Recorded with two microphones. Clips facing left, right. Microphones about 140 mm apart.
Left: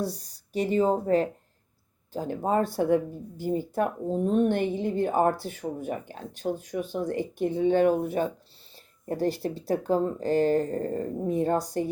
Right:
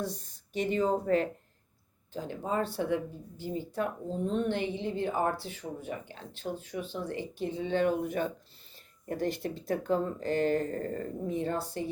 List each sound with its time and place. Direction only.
0.0 s speech: 35° left (ahead or behind)
8.7 s speech: 35° left (ahead or behind)